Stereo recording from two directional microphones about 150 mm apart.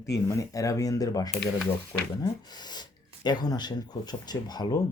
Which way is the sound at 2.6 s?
30° left (ahead or behind).